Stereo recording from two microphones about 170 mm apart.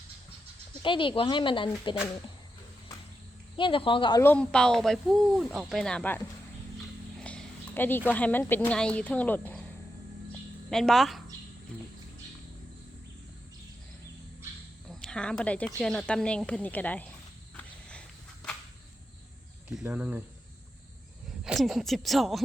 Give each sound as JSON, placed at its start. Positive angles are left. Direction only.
{"t": 0.8, "sound": "speech", "side_deg": 30}
{"t": 3.6, "sound": "a woman's voice", "side_deg": 30}
{"t": 4.2, "sound": "speech", "side_deg": 10}
{"t": 10.7, "sound": "speech", "side_deg": 0}
{"t": 14.8, "sound": "speech", "side_deg": 5}
{"t": 17.5, "sound": "walk", "side_deg": 5}
{"t": 19.7, "sound": "speech", "side_deg": -10}
{"t": 21.4, "sound": "speech", "side_deg": 0}